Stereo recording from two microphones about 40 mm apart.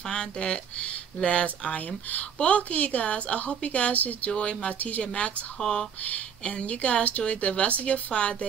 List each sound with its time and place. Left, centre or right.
0.0 s speech: centre; by 4.3 s left
4.3 s speech: left
5.6 s speech: centre
6.4 s speech: left